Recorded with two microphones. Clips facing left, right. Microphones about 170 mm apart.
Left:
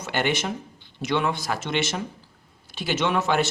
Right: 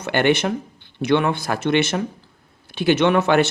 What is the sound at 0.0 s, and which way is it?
Speech, 65° right (ahead or behind).